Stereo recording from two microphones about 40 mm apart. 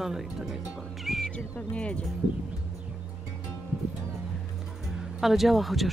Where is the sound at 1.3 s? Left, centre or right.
Left.